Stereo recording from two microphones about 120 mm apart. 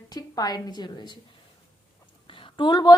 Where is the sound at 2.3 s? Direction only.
45° left (ahead or behind).